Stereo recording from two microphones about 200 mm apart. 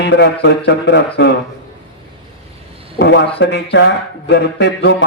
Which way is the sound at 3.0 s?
60° left (ahead or behind).